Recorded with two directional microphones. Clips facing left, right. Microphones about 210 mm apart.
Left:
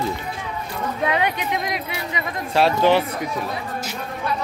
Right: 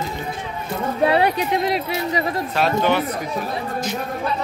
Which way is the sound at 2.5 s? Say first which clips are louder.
Left 3 dB; 30° left (ahead or behind).